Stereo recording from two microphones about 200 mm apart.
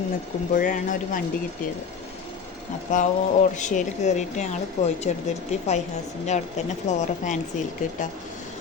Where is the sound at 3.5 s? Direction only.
40° left (ahead or behind).